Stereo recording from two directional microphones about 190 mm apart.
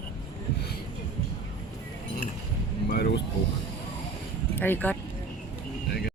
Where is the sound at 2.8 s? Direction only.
55° left (ahead or behind).